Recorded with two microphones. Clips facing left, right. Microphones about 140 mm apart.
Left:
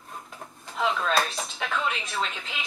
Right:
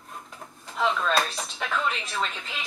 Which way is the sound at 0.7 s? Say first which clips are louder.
Right 1 dB; centre (ahead or behind).